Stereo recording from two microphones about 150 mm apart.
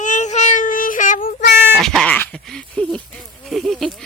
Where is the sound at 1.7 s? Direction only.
5° left (ahead or behind).